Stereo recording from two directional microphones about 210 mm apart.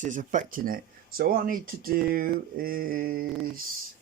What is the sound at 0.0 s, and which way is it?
Speech, 35° right (ahead or behind).